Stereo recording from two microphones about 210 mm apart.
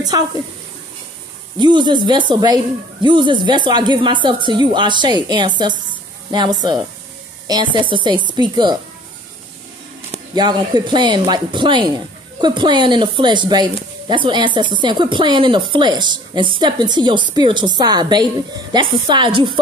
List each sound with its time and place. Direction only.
1.6 s a woman's voice: 20° right (ahead or behind)
10.1 s a woman's voice: 20° right (ahead or behind)